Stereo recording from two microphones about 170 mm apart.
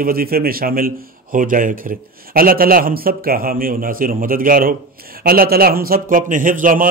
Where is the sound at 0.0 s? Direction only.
60° right (ahead or behind).